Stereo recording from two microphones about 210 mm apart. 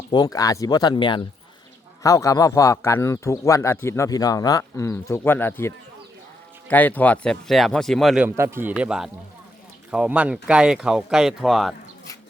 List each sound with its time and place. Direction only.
0.1 s speech: 20° left (ahead or behind); by 11.7 s centre (ahead or behind)